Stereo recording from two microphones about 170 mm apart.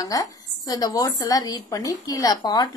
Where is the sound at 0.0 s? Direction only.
20° left (ahead or behind).